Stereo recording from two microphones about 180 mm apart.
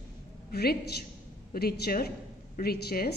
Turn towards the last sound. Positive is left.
turn(degrees=60)  # may be behind; listen again after turning